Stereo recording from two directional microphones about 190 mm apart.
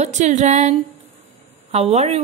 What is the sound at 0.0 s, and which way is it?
A woman's voice, 40° right (ahead or behind).